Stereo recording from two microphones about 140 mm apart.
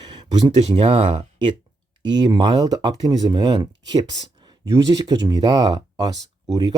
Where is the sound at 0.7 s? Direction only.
40° right (ahead or behind).